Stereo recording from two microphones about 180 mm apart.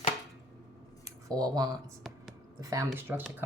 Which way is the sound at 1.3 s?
20° right (ahead or behind).